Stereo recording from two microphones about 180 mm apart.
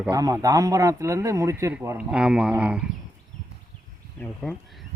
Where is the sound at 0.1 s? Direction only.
20° right (ahead or behind).